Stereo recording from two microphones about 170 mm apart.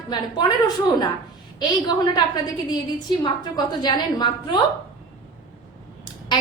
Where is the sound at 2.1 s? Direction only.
25° left (ahead or behind).